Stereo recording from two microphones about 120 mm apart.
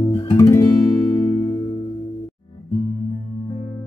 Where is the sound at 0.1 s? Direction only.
25° left (ahead or behind).